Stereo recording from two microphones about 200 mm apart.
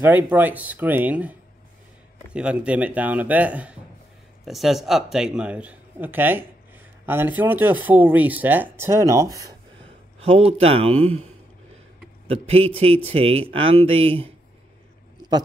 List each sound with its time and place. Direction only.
0.0 s speech: 10° right (ahead or behind)
2.3 s speech: 5° right (ahead or behind)
10.2 s a man's voice: 30° right (ahead or behind)
12.3 s speech: 30° right (ahead or behind)